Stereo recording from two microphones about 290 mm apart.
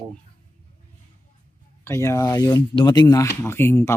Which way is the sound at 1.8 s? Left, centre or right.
Centre.